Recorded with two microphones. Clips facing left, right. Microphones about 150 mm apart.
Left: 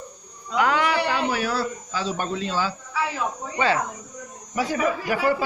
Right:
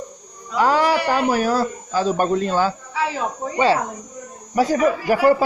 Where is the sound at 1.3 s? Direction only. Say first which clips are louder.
Right 6 dB; 45° right (ahead or behind).